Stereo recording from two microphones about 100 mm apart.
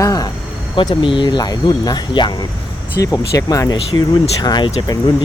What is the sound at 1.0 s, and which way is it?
Speech, 55° left (ahead or behind).